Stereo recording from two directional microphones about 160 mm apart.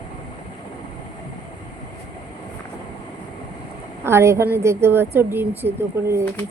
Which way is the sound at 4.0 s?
15° right (ahead or behind).